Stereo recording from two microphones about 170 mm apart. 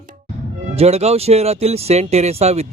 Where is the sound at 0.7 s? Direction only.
40° right (ahead or behind).